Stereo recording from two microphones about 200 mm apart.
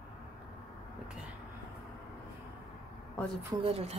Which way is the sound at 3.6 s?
30° right (ahead or behind).